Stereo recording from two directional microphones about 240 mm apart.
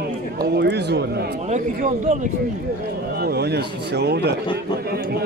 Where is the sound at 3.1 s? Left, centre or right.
Right.